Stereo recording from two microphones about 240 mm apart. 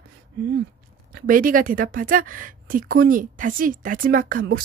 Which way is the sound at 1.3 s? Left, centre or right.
Right.